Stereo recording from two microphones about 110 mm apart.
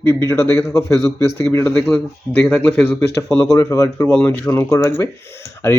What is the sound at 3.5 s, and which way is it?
Speech, 30° left (ahead or behind).